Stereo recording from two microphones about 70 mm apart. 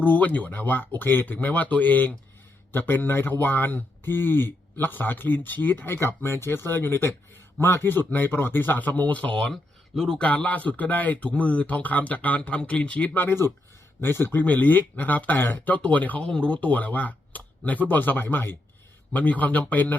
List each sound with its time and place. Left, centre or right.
0.0 s speech: left
9.5 s a sound: centre
10.2 s speech: left
13.2 s speech: left